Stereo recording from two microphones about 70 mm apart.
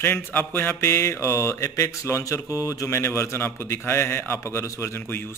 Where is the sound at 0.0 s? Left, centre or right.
Left.